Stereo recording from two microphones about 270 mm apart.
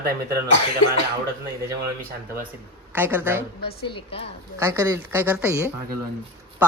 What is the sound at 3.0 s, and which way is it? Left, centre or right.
Speech, centre.